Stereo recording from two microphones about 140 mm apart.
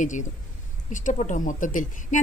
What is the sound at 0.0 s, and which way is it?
A woman's voice, 65° left (ahead or behind).